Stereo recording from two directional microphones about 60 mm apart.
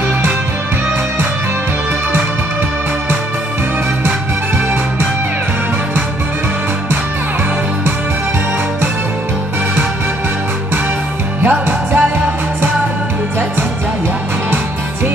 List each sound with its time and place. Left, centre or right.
11.4 s music: right